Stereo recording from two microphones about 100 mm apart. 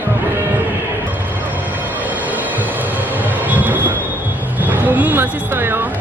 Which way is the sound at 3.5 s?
15° right (ahead or behind).